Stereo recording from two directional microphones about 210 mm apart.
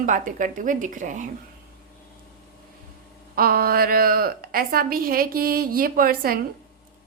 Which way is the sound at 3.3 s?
45° right (ahead or behind).